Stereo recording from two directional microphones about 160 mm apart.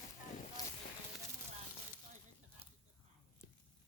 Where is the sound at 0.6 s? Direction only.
25° left (ahead or behind).